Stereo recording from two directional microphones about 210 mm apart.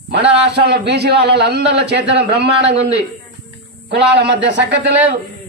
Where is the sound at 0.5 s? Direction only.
55° right (ahead or behind).